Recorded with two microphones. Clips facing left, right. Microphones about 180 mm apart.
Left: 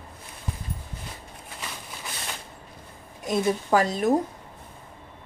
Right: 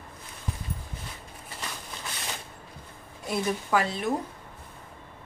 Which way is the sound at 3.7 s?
40° left (ahead or behind).